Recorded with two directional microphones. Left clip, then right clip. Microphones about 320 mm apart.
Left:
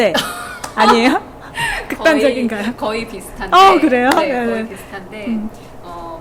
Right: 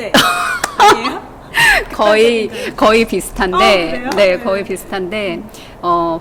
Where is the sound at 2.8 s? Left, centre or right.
Right.